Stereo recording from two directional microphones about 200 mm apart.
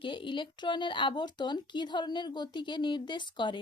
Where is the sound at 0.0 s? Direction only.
25° left (ahead or behind).